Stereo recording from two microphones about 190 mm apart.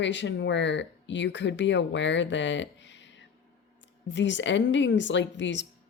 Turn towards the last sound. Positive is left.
turn(degrees=70)  # may be behind; listen again after turning